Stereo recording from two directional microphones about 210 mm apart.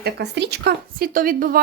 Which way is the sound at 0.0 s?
55° right (ahead or behind).